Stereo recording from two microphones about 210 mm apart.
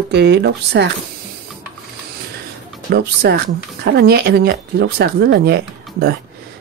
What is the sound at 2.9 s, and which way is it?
Speech, 50° right (ahead or behind).